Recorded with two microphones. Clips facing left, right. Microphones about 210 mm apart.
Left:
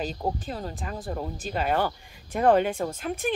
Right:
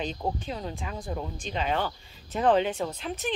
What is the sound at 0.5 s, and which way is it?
Speech, 45° left (ahead or behind).